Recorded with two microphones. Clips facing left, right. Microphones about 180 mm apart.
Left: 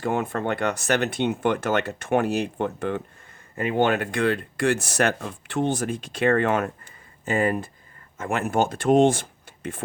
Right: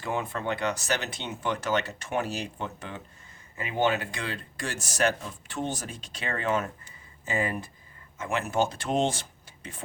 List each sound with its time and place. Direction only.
0.0 s speech: 55° left (ahead or behind)